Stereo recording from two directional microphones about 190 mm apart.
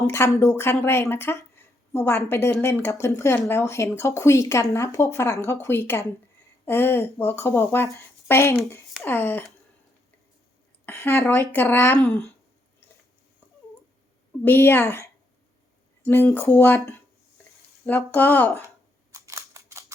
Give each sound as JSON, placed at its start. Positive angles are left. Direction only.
{"t": 0.0, "sound": "speech", "side_deg": 15}
{"t": 10.8, "sound": "speech", "side_deg": 10}
{"t": 14.4, "sound": "speech", "side_deg": 10}
{"t": 19.1, "sound": "scissors", "side_deg": -15}